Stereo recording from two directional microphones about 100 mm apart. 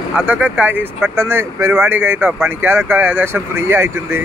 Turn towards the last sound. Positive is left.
turn(degrees=-25)  # may be behind; listen again after turning